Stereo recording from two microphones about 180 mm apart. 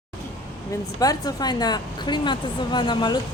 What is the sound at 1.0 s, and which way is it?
Speech, 20° left (ahead or behind).